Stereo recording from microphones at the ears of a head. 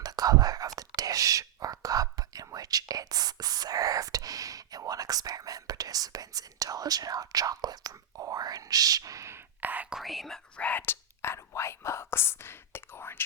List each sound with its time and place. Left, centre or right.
0.0 s whispering: right
9.9 s whispering: centre
10.7 s whispering: left